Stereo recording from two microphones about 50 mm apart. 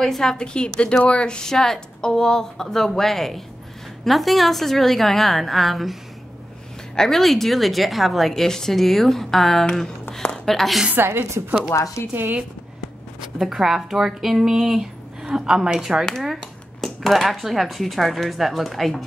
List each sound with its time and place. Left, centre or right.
0.0 s a woman's voice: centre
7.0 s a woman's voice: centre
11.7 s speech: left
12.1 s speech: right
13.5 s speech: centre
16.8 s a woman's voice: centre